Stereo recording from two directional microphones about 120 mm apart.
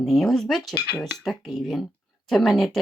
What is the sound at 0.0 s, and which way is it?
Speech, centre (ahead or behind).